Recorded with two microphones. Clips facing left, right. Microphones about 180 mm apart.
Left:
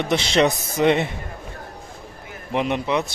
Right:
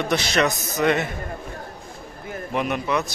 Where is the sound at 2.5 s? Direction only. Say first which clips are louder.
Left 2 dB; 25° left (ahead or behind).